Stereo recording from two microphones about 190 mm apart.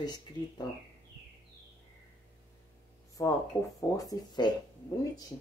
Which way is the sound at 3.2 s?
15° left (ahead or behind).